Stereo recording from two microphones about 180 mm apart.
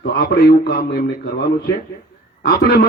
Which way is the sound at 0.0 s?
60° left (ahead or behind).